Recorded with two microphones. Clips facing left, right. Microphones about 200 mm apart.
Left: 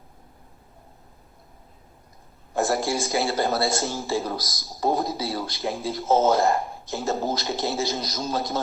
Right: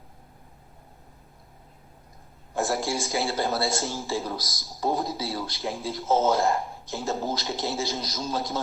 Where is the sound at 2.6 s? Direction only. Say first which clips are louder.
Left 3 dB; 45° left (ahead or behind).